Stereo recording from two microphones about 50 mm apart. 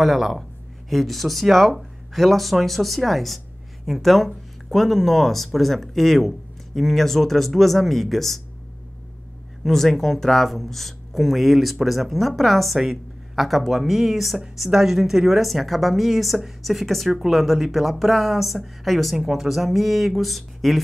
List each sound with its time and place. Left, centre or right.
0.0 s speech: centre
9.7 s speech: centre